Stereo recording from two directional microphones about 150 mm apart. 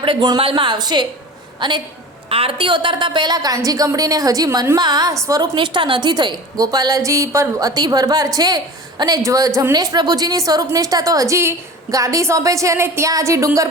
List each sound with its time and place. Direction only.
0.0 s a woman's voice: 30° right (ahead or behind)
4.8 s a woman's voice: 25° right (ahead or behind)